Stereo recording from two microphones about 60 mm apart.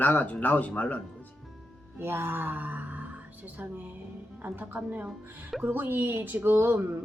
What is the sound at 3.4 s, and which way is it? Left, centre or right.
A woman's voice, right.